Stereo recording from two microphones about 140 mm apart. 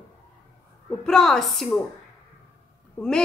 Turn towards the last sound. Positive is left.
turn(degrees=15)  # may be behind; listen again after turning